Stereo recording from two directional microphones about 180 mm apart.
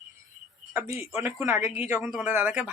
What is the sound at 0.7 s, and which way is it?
Speech, 15° right (ahead or behind).